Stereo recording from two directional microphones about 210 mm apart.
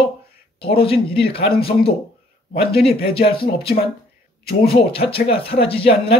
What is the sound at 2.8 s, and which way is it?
Speech, 25° left (ahead or behind).